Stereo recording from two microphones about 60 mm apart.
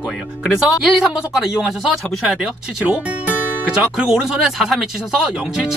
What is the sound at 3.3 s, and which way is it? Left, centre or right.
Music, left.